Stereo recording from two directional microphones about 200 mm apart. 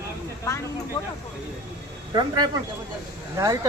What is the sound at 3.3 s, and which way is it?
Speech, 15° right (ahead or behind).